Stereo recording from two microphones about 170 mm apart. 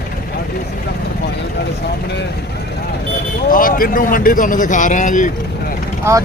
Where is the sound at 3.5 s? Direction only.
55° left (ahead or behind).